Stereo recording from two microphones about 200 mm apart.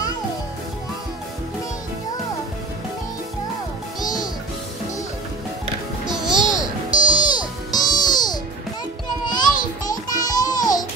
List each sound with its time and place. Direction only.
6.2 s music: 20° right (ahead or behind)
7.2 s music: 20° left (ahead or behind)
9.2 s a sound: 20° left (ahead or behind)
9.8 s music: 20° left (ahead or behind)